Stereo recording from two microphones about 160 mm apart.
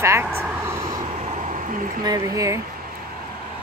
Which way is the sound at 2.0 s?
25° right (ahead or behind).